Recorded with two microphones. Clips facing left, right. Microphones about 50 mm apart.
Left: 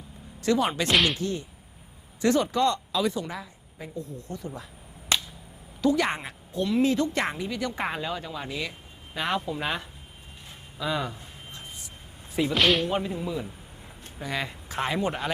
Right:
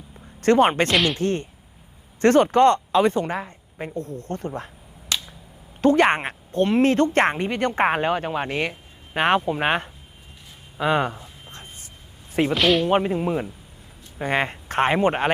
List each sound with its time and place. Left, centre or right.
0.3 s speech: right
0.9 s speech: centre
1.2 s speech: right
5.1 s finger snapping: left
5.8 s speech: right
12.3 s speech: right
12.5 s speech: centre
12.9 s speech: right